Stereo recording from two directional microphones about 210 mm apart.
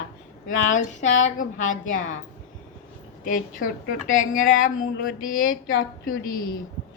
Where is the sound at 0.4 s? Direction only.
35° left (ahead or behind).